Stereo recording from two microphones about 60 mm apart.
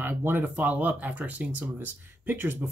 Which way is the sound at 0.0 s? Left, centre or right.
Right.